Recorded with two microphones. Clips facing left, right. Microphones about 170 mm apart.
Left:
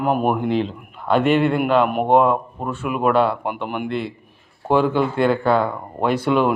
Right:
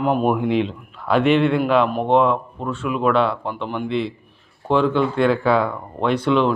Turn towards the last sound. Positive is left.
turn(degrees=10)  # may be behind; listen again after turning